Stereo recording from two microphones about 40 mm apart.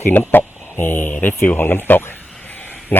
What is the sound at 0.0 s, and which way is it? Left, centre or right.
A man's voice, left.